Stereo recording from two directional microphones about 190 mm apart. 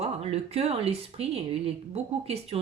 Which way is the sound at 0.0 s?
30° right (ahead or behind).